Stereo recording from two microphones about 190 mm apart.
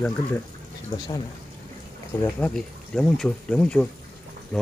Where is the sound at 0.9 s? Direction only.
20° left (ahead or behind).